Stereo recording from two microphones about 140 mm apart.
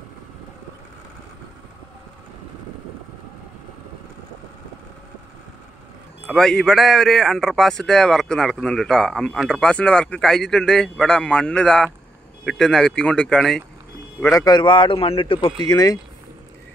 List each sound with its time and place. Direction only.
6.2 s a man's voice: centre (ahead or behind)
14.2 s a man's voice: 25° left (ahead or behind)
15.6 s speech: 30° left (ahead or behind)